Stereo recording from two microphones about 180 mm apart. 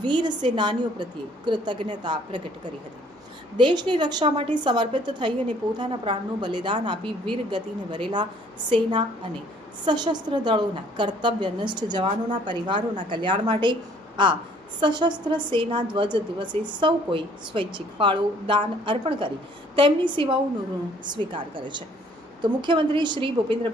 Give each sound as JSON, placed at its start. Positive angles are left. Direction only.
{"t": 0.0, "sound": "a woman's voice", "side_deg": -25}
{"t": 3.6, "sound": "a woman's voice", "side_deg": -25}